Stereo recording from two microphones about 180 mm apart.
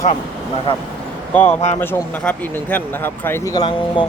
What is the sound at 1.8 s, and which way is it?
Speech, 10° left (ahead or behind).